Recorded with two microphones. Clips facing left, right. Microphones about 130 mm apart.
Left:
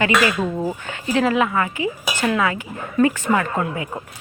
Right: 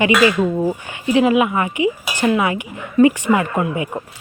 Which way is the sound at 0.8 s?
15° right (ahead or behind).